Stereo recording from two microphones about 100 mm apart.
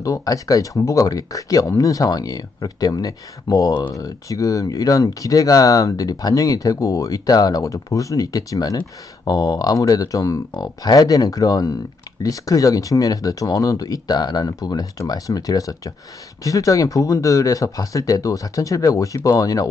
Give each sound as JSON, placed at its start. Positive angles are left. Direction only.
{"t": 0.0, "sound": "speech", "side_deg": 35}